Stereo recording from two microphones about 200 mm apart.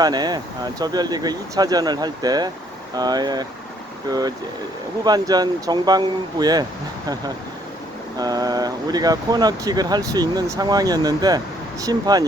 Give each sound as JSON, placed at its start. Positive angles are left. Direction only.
{"t": 0.0, "sound": "speech", "side_deg": -20}
{"t": 8.2, "sound": "speech", "side_deg": -20}